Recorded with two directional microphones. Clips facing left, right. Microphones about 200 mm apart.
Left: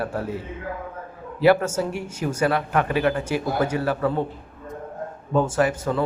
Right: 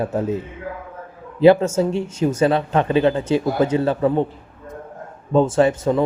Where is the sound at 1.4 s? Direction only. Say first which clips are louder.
Right 5 dB; 20° right (ahead or behind).